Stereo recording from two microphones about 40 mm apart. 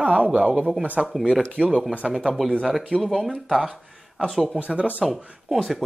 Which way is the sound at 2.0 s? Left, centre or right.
Centre.